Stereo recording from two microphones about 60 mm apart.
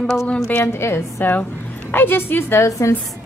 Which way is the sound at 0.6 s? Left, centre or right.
Left.